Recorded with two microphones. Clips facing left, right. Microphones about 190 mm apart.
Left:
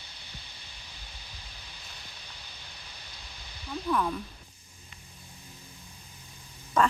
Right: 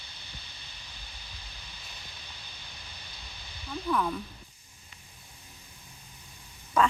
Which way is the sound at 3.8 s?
Centre (ahead or behind).